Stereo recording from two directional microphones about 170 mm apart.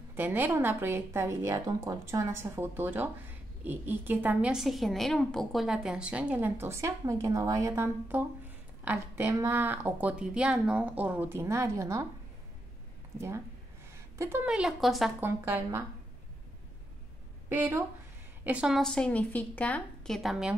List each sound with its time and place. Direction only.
0.1 s a woman's voice: 10° right (ahead or behind)
13.9 s a sound: 15° right (ahead or behind)
14.5 s a woman's voice: centre (ahead or behind)
15.2 s a woman's voice: 15° right (ahead or behind)
17.5 s a woman's voice: 10° right (ahead or behind)